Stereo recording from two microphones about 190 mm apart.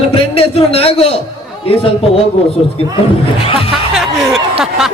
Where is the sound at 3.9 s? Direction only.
5° right (ahead or behind).